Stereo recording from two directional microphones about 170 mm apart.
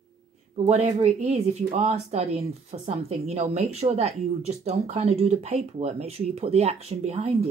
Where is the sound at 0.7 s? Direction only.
40° right (ahead or behind).